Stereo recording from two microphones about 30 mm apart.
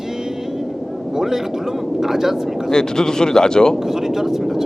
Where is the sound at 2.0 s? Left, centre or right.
Centre.